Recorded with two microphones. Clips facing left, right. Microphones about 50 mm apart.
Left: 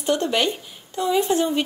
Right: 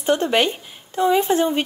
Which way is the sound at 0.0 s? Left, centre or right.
Right.